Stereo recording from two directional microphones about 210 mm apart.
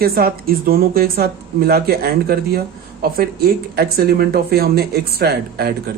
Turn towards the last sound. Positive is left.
turn(degrees=-50)  # may be behind; listen again after turning